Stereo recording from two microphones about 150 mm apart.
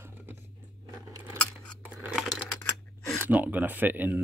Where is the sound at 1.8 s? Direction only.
10° right (ahead or behind).